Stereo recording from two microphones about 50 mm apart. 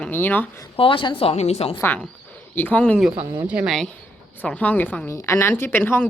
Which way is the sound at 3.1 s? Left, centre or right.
Right.